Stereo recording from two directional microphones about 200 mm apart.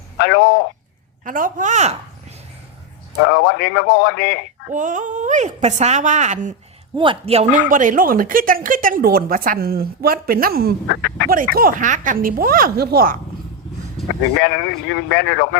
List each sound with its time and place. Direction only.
0.2 s a man's voice: 60° left (ahead or behind)
1.2 s speech: 45° right (ahead or behind)
3.2 s a man's voice: 60° left (ahead or behind)
4.7 s speech: 40° right (ahead or behind)
6.9 s speech: 25° right (ahead or behind); by 13.1 s 50° right (ahead or behind)
14.3 s a man's voice: 60° left (ahead or behind)